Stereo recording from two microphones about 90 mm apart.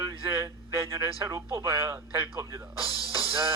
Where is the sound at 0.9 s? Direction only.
35° right (ahead or behind).